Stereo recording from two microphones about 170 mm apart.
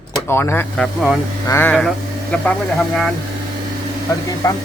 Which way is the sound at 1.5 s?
15° left (ahead or behind).